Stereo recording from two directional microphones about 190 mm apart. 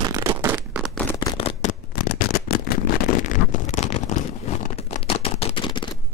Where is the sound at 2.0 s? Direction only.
50° left (ahead or behind); by 5.9 s 25° left (ahead or behind).